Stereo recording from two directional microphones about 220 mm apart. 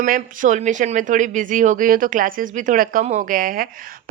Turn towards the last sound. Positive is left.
turn(degrees=-40)  # may be behind; listen again after turning